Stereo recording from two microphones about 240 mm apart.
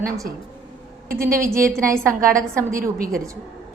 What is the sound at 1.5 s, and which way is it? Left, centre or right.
Speech, centre.